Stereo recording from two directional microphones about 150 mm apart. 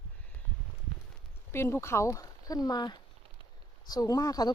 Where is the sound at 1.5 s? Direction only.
15° left (ahead or behind).